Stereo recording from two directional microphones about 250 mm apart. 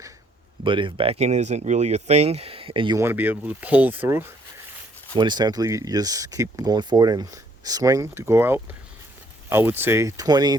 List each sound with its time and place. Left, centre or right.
0.6 s speech: centre